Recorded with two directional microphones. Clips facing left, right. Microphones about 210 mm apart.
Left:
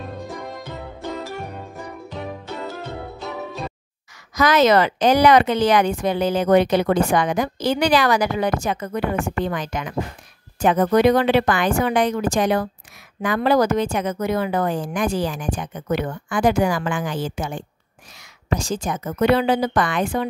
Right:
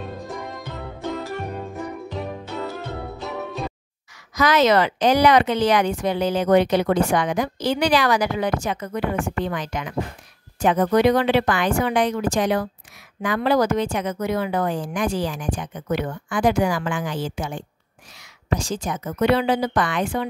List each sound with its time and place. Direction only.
0.0 s music: centre (ahead or behind)
4.4 s speech: 45° left (ahead or behind)